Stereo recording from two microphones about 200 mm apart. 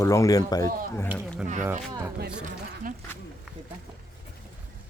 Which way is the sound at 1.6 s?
10° right (ahead or behind).